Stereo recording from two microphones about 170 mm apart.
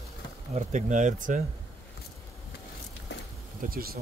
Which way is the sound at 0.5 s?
45° right (ahead or behind).